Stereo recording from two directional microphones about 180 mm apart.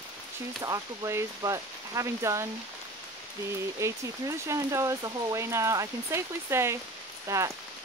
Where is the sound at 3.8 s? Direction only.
15° right (ahead or behind).